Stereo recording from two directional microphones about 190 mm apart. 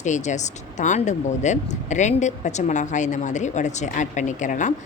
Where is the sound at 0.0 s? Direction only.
40° left (ahead or behind).